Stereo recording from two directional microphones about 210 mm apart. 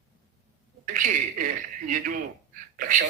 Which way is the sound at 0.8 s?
40° right (ahead or behind).